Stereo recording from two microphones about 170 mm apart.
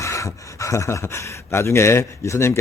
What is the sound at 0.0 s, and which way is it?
Speech, 20° left (ahead or behind).